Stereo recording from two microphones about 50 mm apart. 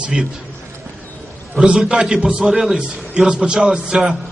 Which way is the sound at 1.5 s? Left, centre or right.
Right.